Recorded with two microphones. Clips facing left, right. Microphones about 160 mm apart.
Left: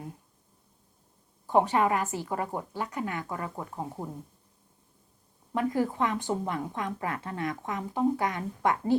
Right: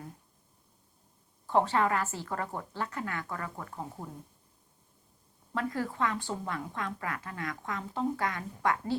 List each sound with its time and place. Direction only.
1.5 s speech: 15° left (ahead or behind)
5.5 s a woman's voice: 15° left (ahead or behind)